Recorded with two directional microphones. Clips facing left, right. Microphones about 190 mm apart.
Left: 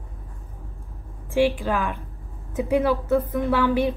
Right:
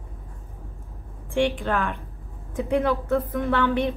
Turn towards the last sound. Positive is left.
turn(degrees=5)  # may be behind; listen again after turning